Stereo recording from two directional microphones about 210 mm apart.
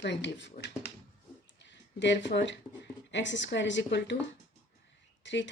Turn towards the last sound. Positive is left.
turn(degrees=60)  # may be behind; listen again after turning